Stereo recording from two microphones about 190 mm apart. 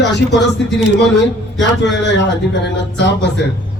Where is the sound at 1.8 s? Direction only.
65° left (ahead or behind).